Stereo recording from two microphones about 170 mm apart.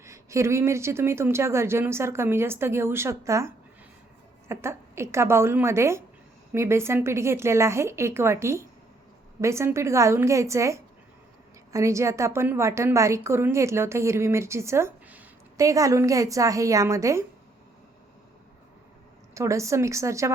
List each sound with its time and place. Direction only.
0.0 s a woman's voice: 15° right (ahead or behind)
19.3 s a woman's voice: 20° right (ahead or behind)